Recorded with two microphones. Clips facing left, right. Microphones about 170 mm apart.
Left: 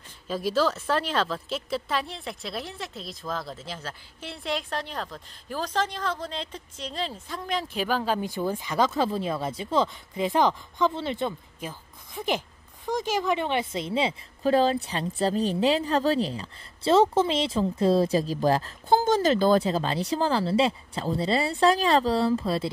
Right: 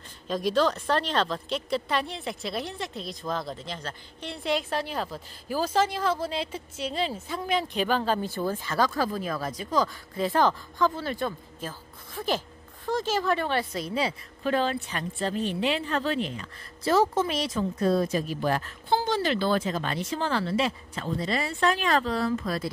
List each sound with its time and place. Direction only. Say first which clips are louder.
0.3 s a woman's voice: right 1 dB; 5° left (ahead or behind); by 14.1 s 25° left (ahead or behind)
14.4 s a woman's voice: left 4 dB; 35° left (ahead or behind)